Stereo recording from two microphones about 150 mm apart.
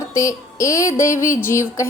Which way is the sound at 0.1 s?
20° left (ahead or behind).